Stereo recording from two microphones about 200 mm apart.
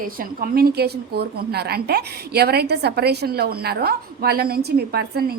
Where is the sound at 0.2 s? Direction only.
45° right (ahead or behind).